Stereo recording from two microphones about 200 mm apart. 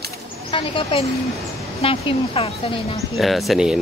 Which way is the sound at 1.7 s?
30° left (ahead or behind).